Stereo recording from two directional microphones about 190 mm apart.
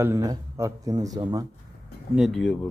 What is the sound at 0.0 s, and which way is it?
A man's voice, 15° right (ahead or behind).